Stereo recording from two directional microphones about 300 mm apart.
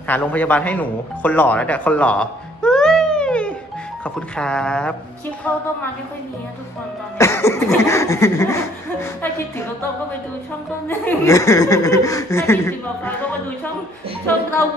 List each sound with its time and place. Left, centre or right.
0.1 s speech: centre
7.2 s speech: centre
10.9 s speech: centre